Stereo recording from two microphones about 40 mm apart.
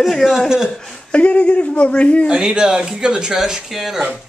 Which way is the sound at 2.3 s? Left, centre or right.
Centre.